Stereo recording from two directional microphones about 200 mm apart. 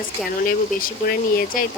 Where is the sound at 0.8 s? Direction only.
45° left (ahead or behind).